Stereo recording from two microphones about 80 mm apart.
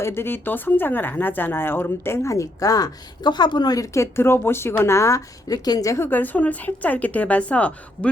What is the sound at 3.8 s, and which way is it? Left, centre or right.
A woman's voice, left.